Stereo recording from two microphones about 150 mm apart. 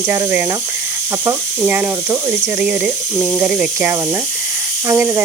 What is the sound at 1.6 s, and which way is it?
Speech, 15° right (ahead or behind).